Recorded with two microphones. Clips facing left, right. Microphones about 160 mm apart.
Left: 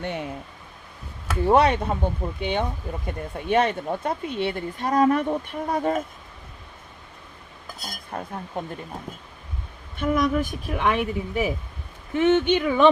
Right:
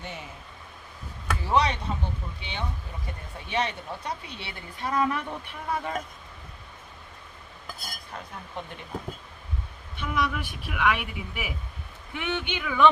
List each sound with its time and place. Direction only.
0.0 s speech: 65° left (ahead or behind)
1.4 s speech: 55° left (ahead or behind)
8.1 s speech: 50° left (ahead or behind)
10.0 s speech: 45° left (ahead or behind)